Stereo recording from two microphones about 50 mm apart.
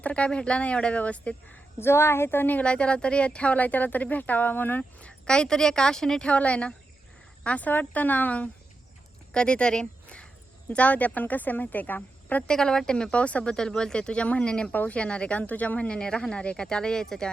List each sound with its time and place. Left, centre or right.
0.0 s a woman's voice: left
1.8 s a woman's voice: left
2.6 s speech: left
4.8 s a sound: left
5.3 s speech: centre; by 8.4 s left
9.3 s speech: centre; by 12.5 s left
12.5 s speech: centre
14.7 s speech: left
14.9 s a woman's voice: left
16.0 s speech: centre